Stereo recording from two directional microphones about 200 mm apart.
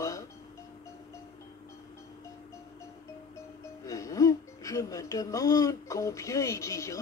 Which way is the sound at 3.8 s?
15° left (ahead or behind).